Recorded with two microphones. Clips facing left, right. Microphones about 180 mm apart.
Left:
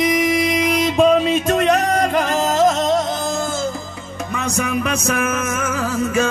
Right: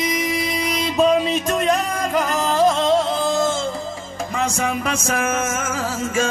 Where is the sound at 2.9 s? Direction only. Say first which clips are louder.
Right 1 dB; 30° right (ahead or behind).